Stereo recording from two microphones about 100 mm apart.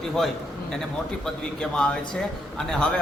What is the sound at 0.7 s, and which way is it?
A man's voice, 5° left (ahead or behind).